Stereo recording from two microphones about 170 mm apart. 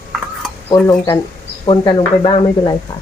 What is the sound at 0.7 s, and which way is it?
Speech, 20° left (ahead or behind).